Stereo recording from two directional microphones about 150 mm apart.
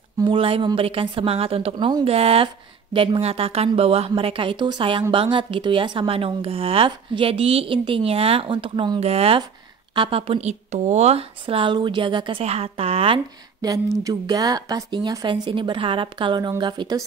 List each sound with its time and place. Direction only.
0.2 s a woman's voice: 35° right (ahead or behind)
9.0 s a woman's voice: 45° right (ahead or behind)
13.6 s a woman's voice: 25° right (ahead or behind)